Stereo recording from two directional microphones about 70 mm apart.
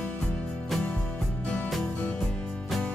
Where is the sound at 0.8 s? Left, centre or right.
Centre.